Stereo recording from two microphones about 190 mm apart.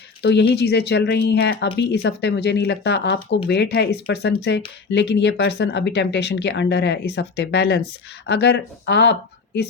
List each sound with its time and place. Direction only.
0.2 s speech: 65° left (ahead or behind)